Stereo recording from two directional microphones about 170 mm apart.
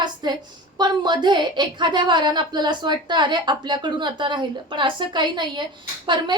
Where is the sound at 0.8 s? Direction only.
25° right (ahead or behind).